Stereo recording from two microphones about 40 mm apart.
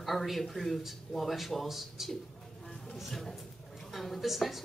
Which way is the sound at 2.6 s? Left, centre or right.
Centre.